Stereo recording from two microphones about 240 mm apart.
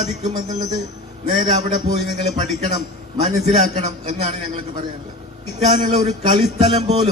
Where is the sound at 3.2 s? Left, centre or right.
Right.